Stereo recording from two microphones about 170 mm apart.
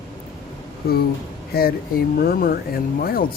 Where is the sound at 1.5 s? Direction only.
65° left (ahead or behind).